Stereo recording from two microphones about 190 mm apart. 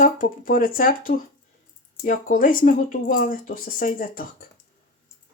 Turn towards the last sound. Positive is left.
turn(degrees=45)  # may be behind; listen again after turning